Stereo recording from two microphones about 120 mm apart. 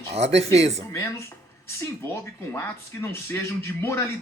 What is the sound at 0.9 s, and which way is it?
Speech, 25° left (ahead or behind).